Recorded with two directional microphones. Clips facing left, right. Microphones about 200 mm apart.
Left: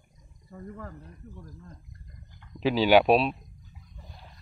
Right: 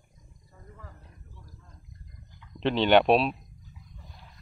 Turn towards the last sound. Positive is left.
turn(degrees=0)  # may be behind; listen again after turning